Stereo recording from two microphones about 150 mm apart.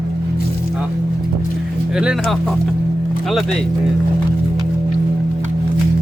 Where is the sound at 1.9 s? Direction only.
5° right (ahead or behind).